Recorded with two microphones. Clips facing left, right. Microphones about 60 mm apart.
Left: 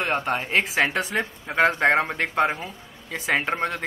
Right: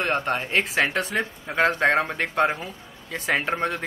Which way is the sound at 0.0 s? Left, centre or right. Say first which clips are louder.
Even; centre.